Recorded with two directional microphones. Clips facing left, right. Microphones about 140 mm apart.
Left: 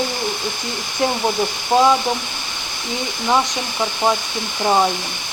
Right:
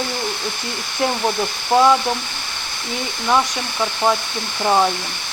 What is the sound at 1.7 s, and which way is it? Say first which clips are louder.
Speech: even; 15° left (ahead or behind).